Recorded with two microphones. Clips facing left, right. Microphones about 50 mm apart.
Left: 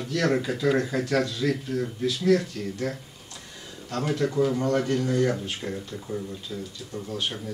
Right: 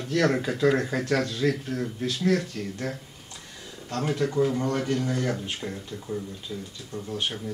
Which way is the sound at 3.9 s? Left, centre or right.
Centre.